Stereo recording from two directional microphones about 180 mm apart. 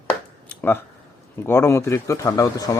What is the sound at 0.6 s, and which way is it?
Speech, 10° left (ahead or behind).